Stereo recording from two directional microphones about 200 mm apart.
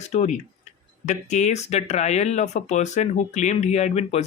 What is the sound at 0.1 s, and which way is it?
Speech, 35° left (ahead or behind).